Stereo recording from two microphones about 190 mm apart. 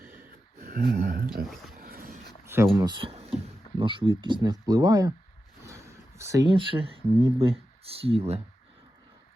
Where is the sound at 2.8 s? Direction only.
25° right (ahead or behind).